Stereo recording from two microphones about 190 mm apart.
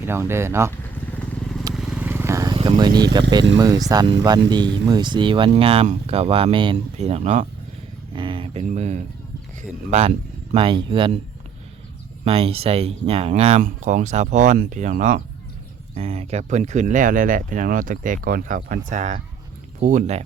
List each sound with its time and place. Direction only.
0.0 s speech: 15° right (ahead or behind)
1.1 s vehicle: 5° left (ahead or behind); by 2.6 s 15° right (ahead or behind)
2.6 s speech: 25° right (ahead or behind)
8.1 s a sound: 25° right (ahead or behind)
8.7 s speech: 35° right (ahead or behind)
12.2 s speech: 30° right (ahead or behind)